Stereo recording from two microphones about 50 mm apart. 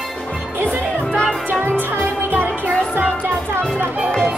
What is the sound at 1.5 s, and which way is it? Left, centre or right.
Music, right.